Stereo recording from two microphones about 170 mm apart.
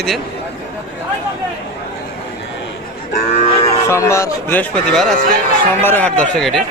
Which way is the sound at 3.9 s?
15° left (ahead or behind).